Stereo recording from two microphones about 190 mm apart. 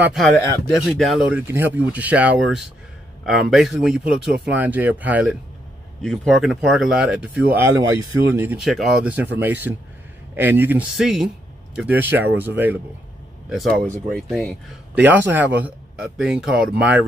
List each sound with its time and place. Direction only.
0.0 s speech: centre (ahead or behind)
13.8 s speech: 40° right (ahead or behind)
14.3 s speech: 5° left (ahead or behind)
15.0 s speech: 10° right (ahead or behind)